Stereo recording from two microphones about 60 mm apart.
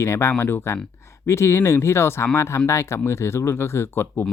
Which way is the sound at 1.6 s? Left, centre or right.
Left.